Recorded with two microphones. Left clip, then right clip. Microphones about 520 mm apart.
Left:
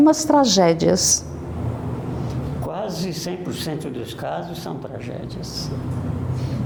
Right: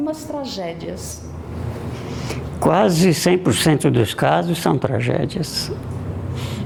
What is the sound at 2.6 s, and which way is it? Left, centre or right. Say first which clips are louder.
Speech: right 13 dB; right.